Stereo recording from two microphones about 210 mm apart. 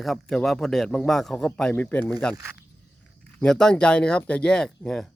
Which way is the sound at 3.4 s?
5° left (ahead or behind).